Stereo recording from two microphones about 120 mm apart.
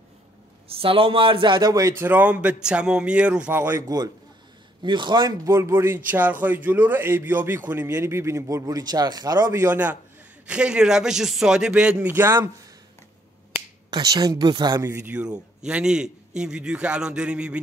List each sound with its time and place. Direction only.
0.7 s a man's voice: 50° right (ahead or behind)
1.7 s a man's voice: 25° right (ahead or behind)
3.8 s speech: 35° right (ahead or behind)
5.5 s a man's voice: 20° right (ahead or behind)
13.8 s speech: 35° right (ahead or behind)
14.9 s a man's voice: 20° right (ahead or behind)
15.1 s a man's voice: 5° right (ahead or behind)